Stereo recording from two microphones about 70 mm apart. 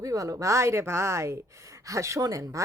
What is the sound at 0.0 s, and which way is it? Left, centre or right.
A woman's voice, right.